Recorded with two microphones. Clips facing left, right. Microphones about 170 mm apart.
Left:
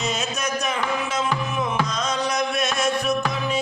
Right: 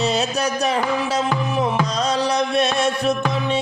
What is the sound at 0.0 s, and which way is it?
Music, 35° right (ahead or behind).